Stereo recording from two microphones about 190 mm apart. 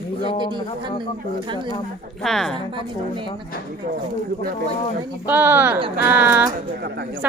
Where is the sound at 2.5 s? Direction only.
25° right (ahead or behind).